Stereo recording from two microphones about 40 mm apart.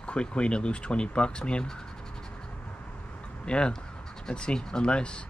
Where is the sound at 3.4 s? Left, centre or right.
Left.